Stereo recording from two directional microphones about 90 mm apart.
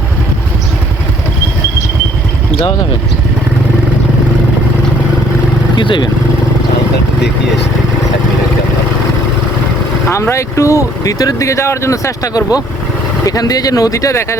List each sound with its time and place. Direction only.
5.7 s speech: 60° left (ahead or behind)
10.1 s speech: 35° left (ahead or behind)